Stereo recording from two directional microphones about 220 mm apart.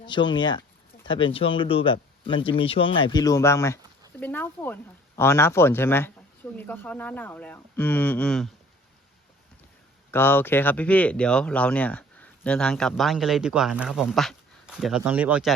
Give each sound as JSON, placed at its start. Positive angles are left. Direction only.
{"t": 0.0, "sound": "speech", "side_deg": 20}
{"t": 10.1, "sound": "speech", "side_deg": 10}